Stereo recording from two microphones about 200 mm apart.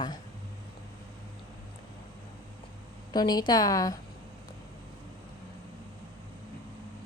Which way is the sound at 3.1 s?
20° left (ahead or behind).